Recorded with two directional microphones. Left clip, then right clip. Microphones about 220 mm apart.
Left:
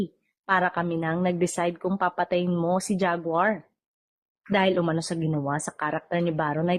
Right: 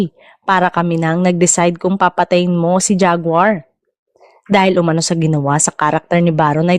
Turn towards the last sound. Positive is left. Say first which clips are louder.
# right 12 dB
turn(degrees=-45)  # may be behind; listen again after turning